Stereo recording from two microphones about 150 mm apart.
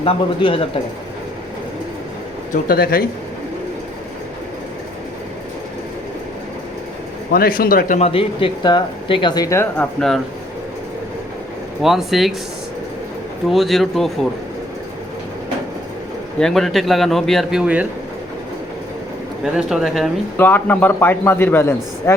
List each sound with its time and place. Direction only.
0.0 s speech: 40° left (ahead or behind)
2.5 s speech: 85° left
7.3 s a man's voice: 80° left
7.9 s speech: 40° left (ahead or behind); by 9.8 s 20° left (ahead or behind)
11.8 s speech: centre (ahead or behind)
13.5 s speech: centre (ahead or behind)
16.4 s speech: centre (ahead or behind)
19.5 s speech: 5° right (ahead or behind)
20.3 s a man's voice: 15° left (ahead or behind)